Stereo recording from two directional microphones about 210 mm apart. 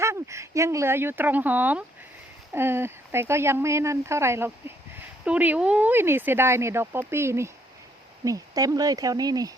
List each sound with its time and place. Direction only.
0.0 s speech: 15° right (ahead or behind)